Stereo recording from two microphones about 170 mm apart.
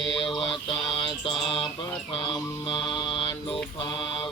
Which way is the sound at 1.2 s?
30° left (ahead or behind).